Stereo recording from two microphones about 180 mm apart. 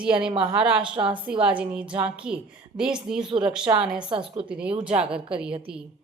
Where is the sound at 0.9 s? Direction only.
30° right (ahead or behind).